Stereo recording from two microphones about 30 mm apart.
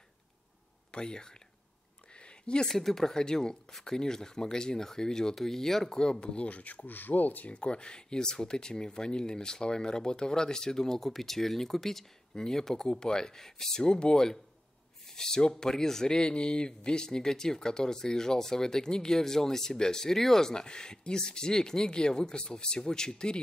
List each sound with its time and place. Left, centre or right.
0.9 s speech: left
2.1 s a sound: left
2.7 s speech: centre
5.3 s speech: centre
5.9 s speech: left
6.3 s speech: left
7.5 s speech: left; by 11.0 s centre
11.0 s speech: centre
13.8 s speech: left
16.1 s speech: left; by 20.4 s centre
20.4 s speech: left